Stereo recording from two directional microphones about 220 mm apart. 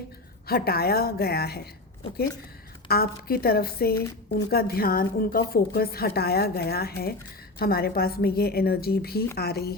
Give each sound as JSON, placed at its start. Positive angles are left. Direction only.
{"t": 0.4, "sound": "a woman's voice", "side_deg": 45}
{"t": 2.8, "sound": "a woman's voice", "side_deg": 45}